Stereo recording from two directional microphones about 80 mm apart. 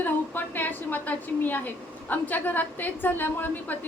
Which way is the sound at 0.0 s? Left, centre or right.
Left.